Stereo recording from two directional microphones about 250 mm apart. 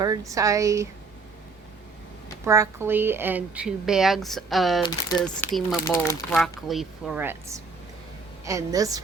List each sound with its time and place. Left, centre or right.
0.0 s speech: centre
2.4 s speech: centre
4.8 s speech: centre
5.2 s speech: centre